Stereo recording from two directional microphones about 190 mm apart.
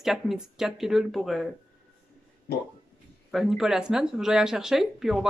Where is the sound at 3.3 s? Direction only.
Centre (ahead or behind).